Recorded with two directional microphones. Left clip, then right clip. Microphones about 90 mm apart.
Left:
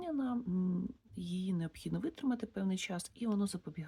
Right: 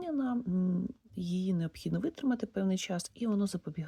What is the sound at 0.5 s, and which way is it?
Speech, 20° right (ahead or behind).